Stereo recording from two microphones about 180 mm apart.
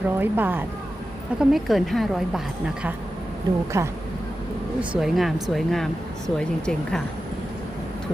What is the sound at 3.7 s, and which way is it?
Speech, 15° right (ahead or behind).